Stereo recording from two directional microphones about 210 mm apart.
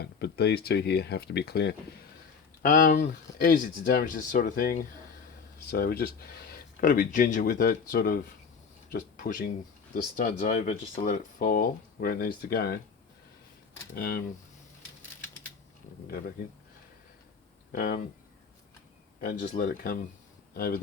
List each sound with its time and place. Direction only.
0.0 s speech: 50° left (ahead or behind)
13.9 s speech: 45° left (ahead or behind)
17.7 s speech: 45° left (ahead or behind)
19.2 s speech: 40° left (ahead or behind)